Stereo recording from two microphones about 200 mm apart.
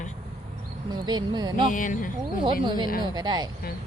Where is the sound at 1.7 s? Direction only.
40° left (ahead or behind).